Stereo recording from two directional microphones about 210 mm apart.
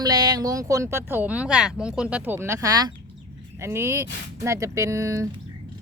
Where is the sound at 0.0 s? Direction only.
20° right (ahead or behind).